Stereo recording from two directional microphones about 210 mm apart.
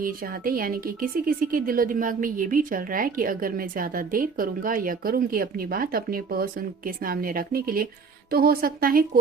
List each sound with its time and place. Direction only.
0.0 s a woman's voice: 45° right (ahead or behind)